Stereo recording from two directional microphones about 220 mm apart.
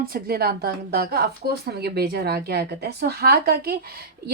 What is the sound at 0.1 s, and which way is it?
Speech, 45° right (ahead or behind).